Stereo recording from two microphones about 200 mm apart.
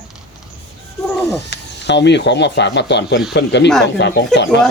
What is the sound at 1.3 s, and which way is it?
Speech, 60° left (ahead or behind).